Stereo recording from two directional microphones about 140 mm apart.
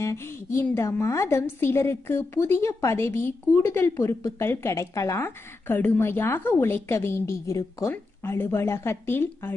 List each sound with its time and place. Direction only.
0.0 s a woman's voice: 20° left (ahead or behind)